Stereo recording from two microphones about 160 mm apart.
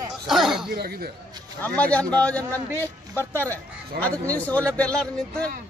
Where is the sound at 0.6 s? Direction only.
80° right.